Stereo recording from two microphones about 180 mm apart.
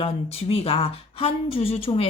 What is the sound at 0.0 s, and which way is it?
Speech, 30° left (ahead or behind).